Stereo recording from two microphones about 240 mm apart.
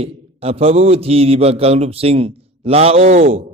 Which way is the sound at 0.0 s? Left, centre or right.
Right.